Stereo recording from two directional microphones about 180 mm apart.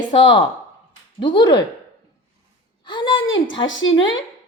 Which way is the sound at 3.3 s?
90° left.